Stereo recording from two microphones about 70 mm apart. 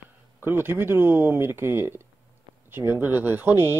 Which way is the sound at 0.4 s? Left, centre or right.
Right.